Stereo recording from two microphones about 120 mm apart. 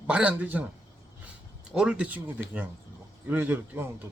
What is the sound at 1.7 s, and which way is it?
Speech, 5° right (ahead or behind).